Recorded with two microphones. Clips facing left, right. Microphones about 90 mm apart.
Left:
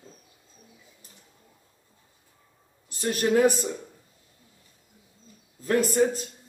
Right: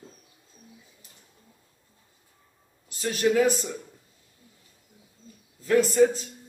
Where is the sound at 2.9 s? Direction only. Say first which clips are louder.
Even; 45° left (ahead or behind).